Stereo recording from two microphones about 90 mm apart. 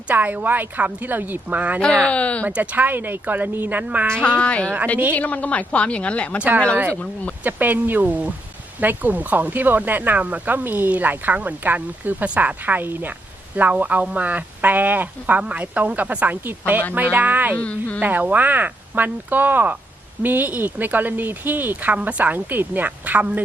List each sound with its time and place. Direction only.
0.1 s speech: 20° right (ahead or behind)
1.8 s a woman's voice: 10° left (ahead or behind)
2.5 s speech: 15° right (ahead or behind)
4.2 s a woman's voice: 15° left (ahead or behind)
7.4 s speech: 20° right (ahead or behind)
17.6 s a woman's voice: 15° left (ahead or behind)
18.0 s speech: 20° right (ahead or behind)